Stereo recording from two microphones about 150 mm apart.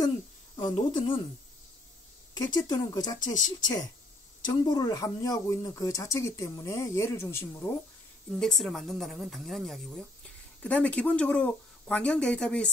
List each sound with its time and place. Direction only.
0.7 s speech: 35° left (ahead or behind)
2.3 s speech: 25° left (ahead or behind)
8.3 s a woman's voice: 5° left (ahead or behind)